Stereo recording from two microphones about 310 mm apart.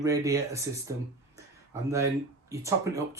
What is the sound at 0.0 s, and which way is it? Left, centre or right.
Speech, centre.